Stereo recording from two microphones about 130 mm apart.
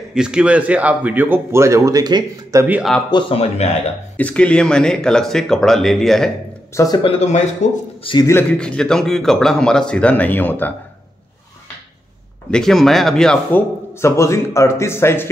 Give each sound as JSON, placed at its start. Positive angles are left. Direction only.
{"t": 0.1, "sound": "a man's voice", "side_deg": -5}
{"t": 3.1, "sound": "speech", "side_deg": 40}
{"t": 4.2, "sound": "speech", "side_deg": 10}
{"t": 6.7, "sound": "speech", "side_deg": 25}
{"t": 7.0, "sound": "speech", "side_deg": 45}
{"t": 7.6, "sound": "speech", "side_deg": 70}
{"t": 8.2, "sound": "a man's voice", "side_deg": 20}
{"t": 8.5, "sound": "a man's voice", "side_deg": 5}
{"t": 12.4, "sound": "a man's voice", "side_deg": 5}